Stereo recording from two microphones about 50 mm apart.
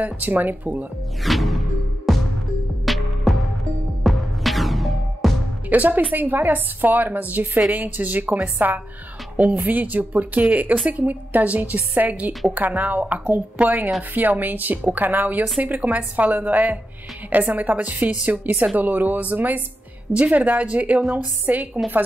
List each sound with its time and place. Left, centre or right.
0.0 s a woman's voice: right
1.2 s music: centre
5.7 s a woman's voice: right